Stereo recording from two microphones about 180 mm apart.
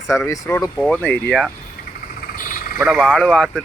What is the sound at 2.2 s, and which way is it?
Frog, 50° left (ahead or behind).